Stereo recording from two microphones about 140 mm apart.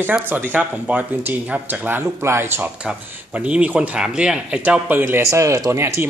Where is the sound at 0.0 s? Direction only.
15° right (ahead or behind).